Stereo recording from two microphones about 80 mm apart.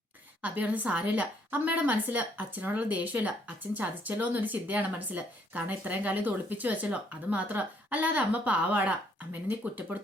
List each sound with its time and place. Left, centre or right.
0.4 s speech: centre